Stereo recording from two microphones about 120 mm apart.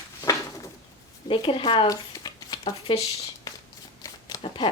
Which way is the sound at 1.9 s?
30° left (ahead or behind).